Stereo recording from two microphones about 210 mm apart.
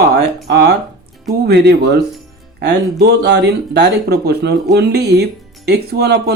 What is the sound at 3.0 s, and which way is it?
Speech, 55° right (ahead or behind).